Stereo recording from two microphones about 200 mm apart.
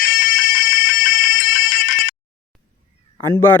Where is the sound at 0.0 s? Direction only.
45° left (ahead or behind).